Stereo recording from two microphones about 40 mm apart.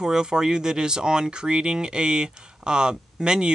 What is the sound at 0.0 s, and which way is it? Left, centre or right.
Speech, centre.